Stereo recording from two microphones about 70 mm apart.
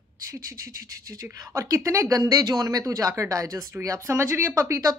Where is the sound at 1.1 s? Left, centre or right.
Right.